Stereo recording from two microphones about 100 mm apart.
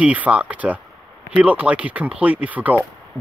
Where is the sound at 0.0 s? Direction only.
15° right (ahead or behind).